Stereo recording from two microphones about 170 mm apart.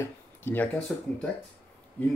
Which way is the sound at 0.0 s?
10° left (ahead or behind).